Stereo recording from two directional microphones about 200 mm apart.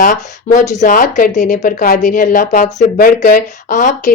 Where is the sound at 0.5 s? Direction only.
35° left (ahead or behind).